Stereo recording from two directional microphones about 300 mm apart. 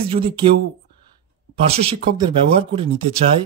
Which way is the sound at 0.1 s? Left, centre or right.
Centre.